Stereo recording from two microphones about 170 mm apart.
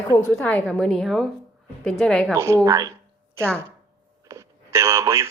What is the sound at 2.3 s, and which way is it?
Speech, 15° right (ahead or behind).